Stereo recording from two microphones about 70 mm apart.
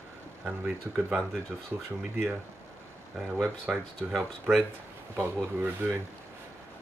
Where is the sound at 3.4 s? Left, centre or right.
Right.